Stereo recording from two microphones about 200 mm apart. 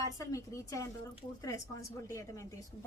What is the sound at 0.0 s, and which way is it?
Speech, 15° left (ahead or behind).